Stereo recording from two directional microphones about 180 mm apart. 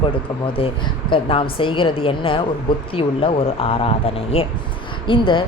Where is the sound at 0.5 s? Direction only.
30° left (ahead or behind).